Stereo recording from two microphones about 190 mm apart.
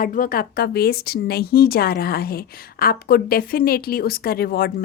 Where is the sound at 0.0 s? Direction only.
45° left (ahead or behind).